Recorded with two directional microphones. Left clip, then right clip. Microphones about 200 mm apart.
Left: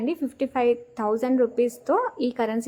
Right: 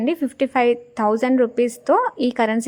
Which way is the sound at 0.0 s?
35° right (ahead or behind).